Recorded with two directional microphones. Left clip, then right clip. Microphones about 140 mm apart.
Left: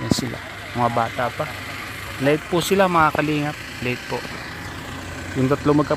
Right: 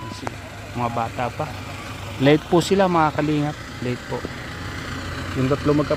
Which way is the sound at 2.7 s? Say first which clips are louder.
Left 4 dB; 5° right (ahead or behind).